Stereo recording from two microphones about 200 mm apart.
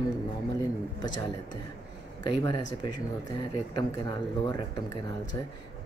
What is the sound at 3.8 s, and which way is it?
Speech, 20° left (ahead or behind).